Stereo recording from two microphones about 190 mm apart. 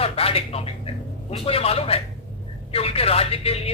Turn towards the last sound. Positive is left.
turn(degrees=30)  # may be behind; listen again after turning